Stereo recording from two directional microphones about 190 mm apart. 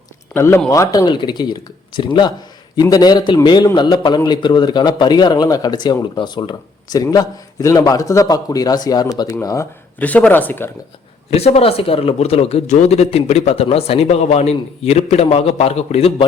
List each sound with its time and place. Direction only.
0.3 s a man's voice: 15° left (ahead or behind)
11.3 s a man's voice: 35° left (ahead or behind)